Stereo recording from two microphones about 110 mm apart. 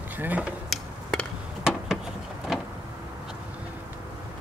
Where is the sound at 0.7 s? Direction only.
5° left (ahead or behind).